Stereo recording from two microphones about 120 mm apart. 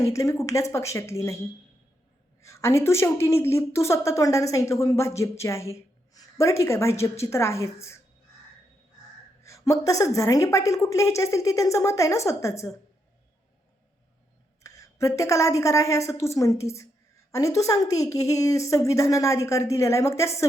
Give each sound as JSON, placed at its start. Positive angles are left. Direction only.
{"t": 0.0, "sound": "speech", "side_deg": 25}
{"t": 2.4, "sound": "speech", "side_deg": 25}
{"t": 9.4, "sound": "speech", "side_deg": 25}
{"t": 14.6, "sound": "speech", "side_deg": 25}